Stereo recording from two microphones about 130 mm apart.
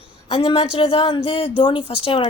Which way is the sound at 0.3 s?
45° left (ahead or behind).